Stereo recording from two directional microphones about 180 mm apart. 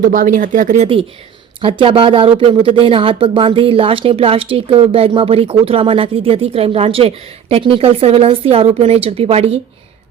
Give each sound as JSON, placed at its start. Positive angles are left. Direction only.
{"t": 0.0, "sound": "speech", "side_deg": -50}
{"t": 1.6, "sound": "speech", "side_deg": -30}